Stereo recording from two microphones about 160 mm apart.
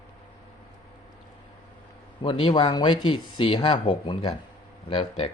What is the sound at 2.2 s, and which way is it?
Speech, 30° left (ahead or behind).